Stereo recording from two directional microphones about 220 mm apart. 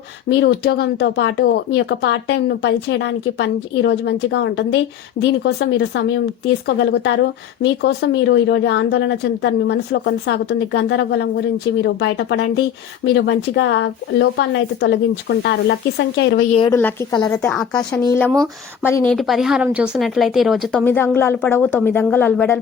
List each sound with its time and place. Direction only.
0.3 s speech: 50° left (ahead or behind)
16.5 s a woman's voice: 25° left (ahead or behind); by 20.8 s centre (ahead or behind)
20.8 s a woman's voice: 10° left (ahead or behind)